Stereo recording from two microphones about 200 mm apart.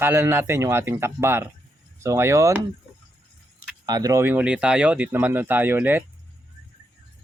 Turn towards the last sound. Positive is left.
turn(degrees=-10)  # may be behind; listen again after turning